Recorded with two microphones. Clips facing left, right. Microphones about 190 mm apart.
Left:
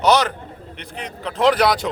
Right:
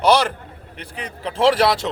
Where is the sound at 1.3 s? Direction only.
30° right (ahead or behind).